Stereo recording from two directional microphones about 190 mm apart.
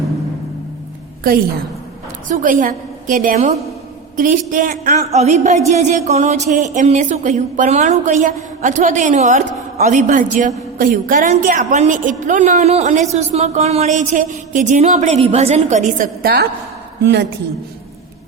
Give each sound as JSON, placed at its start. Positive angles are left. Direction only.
{"t": 2.3, "sound": "a woman's voice", "side_deg": -40}